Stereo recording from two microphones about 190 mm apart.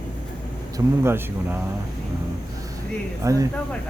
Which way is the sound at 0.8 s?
15° right (ahead or behind).